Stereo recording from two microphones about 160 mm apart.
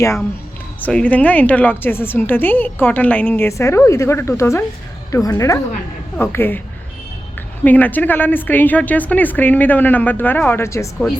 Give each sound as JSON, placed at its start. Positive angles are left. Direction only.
{"t": 0.8, "sound": "a woman's voice", "side_deg": 10}
{"t": 7.6, "sound": "a woman's voice", "side_deg": 10}